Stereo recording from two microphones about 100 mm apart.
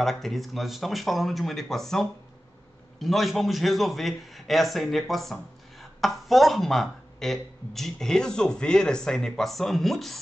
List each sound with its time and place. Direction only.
0.0 s a man's voice: centre (ahead or behind)